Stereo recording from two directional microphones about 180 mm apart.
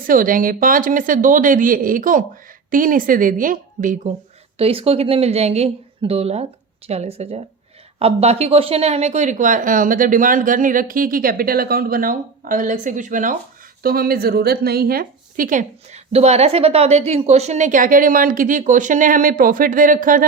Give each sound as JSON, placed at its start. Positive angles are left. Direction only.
{"t": 0.1, "sound": "a woman's voice", "side_deg": -50}
{"t": 4.5, "sound": "a woman's voice", "side_deg": -30}